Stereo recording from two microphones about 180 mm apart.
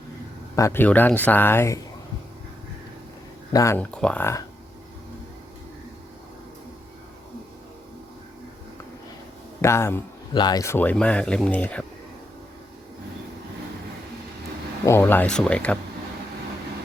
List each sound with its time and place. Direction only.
0.5 s speech: 15° left (ahead or behind)
3.5 s speech: 15° left (ahead or behind)
3.9 s speech: 5° left (ahead or behind)
9.6 s speech: 15° left (ahead or behind)
14.8 s speech: 10° left (ahead or behind)